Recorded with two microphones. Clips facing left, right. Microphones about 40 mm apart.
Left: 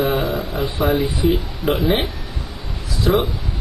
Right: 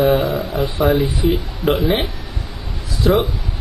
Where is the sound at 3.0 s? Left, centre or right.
Centre.